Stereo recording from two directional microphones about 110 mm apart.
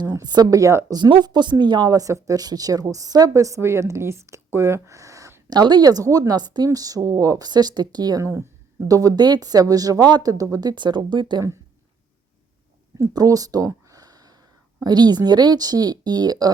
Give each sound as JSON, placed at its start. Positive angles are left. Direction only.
{"t": 0.1, "sound": "speech", "side_deg": -40}
{"t": 0.9, "sound": "speech", "side_deg": -40}
{"t": 13.0, "sound": "a sound", "side_deg": -35}
{"t": 14.8, "sound": "speech", "side_deg": -40}